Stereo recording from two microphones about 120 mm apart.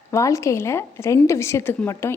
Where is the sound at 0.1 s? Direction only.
25° left (ahead or behind).